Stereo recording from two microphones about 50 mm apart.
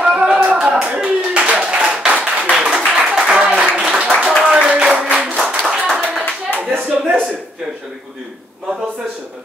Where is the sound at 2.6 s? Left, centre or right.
Right.